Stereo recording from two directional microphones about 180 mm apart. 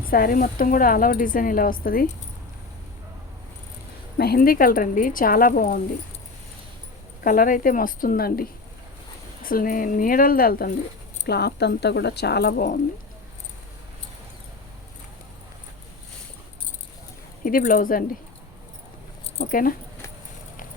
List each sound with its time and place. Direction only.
0.1 s speech: 50° left (ahead or behind)
4.2 s speech: 55° left (ahead or behind)
7.3 s speech: 50° left (ahead or behind)
17.4 s speech: 50° left (ahead or behind)
19.5 s speech: 50° left (ahead or behind)